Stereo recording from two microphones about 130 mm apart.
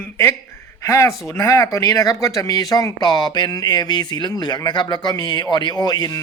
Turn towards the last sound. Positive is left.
turn(degrees=30)  # may be behind; listen again after turning